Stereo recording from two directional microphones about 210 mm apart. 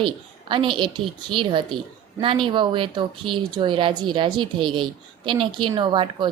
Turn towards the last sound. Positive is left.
turn(degrees=-25)  # may be behind; listen again after turning